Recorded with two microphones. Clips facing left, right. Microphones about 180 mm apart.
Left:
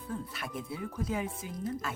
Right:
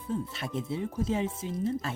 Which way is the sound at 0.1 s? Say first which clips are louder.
Right 6 dB; 25° right (ahead or behind).